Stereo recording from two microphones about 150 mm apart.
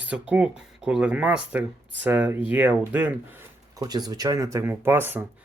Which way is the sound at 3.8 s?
25° right (ahead or behind).